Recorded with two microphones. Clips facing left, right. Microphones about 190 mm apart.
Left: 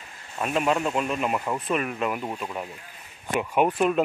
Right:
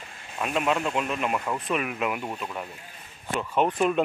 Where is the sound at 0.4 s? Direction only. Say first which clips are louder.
Left 2 dB; centre (ahead or behind).